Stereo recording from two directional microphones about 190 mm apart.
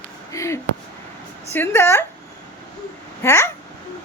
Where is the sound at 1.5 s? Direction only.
15° left (ahead or behind).